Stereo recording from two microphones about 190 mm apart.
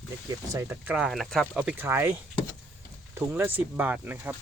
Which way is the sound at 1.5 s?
10° right (ahead or behind).